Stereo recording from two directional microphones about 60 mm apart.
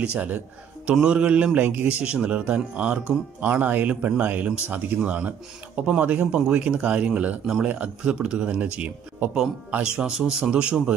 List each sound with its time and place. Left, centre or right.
0.0 s a man's voice: right